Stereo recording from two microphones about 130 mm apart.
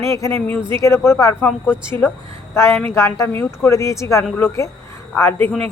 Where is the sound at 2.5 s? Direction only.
20° left (ahead or behind).